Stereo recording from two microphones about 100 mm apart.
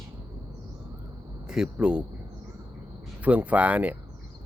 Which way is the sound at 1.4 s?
5° right (ahead or behind).